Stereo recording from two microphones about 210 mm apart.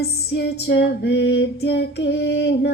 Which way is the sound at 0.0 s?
50° left (ahead or behind).